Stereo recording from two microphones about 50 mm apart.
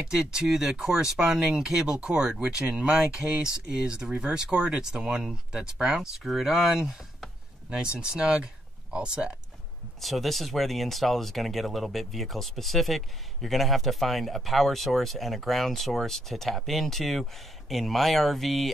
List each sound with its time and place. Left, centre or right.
0.0 s speech: centre
5.9 s speech: centre
7.7 s speech: centre
9.9 s speech: centre